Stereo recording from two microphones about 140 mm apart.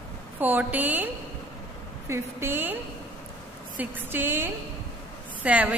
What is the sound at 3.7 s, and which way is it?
A woman's voice, 15° right (ahead or behind).